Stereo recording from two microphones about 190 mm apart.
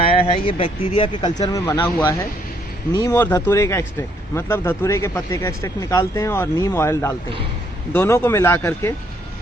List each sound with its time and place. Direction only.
0.0 s speech: 25° left (ahead or behind)